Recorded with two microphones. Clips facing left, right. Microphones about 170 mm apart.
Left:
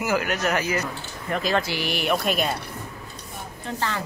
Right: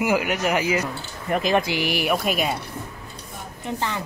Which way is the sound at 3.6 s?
15° right (ahead or behind).